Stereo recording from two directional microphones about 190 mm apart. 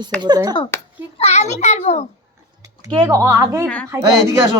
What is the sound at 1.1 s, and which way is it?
Speech, 35° left (ahead or behind).